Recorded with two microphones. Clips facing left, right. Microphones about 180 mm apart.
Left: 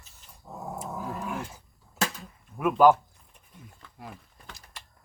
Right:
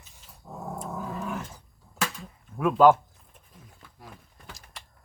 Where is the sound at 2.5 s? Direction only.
Centre (ahead or behind).